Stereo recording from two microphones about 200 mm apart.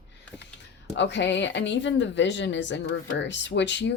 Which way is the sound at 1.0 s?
60° left (ahead or behind).